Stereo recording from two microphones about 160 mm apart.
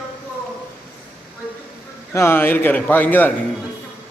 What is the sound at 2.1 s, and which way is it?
Speech, 15° left (ahead or behind).